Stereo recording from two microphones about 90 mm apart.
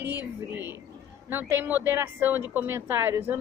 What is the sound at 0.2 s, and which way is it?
A woman's voice, 25° right (ahead or behind).